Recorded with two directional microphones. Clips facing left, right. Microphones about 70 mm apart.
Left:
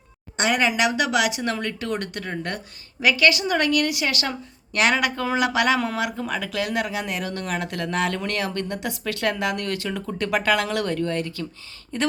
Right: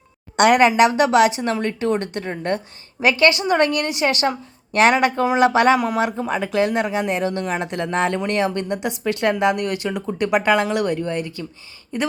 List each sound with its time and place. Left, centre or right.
0.3 s a woman's voice: right
0.8 s a woman's voice: right; by 12.1 s centre